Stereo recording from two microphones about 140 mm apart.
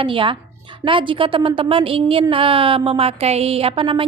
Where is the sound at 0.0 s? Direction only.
40° right (ahead or behind).